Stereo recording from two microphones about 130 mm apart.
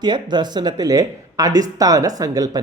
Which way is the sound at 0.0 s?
35° right (ahead or behind).